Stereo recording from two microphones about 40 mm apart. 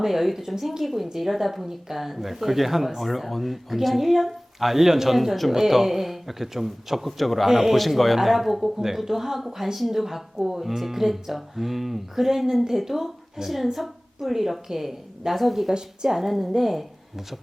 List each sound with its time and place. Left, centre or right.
0.0 s a woman's voice: centre
15.7 s a woman's voice: centre
16.1 s a woman's voice: centre